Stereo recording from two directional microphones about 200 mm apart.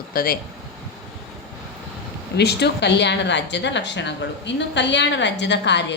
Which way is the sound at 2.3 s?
55° left (ahead or behind).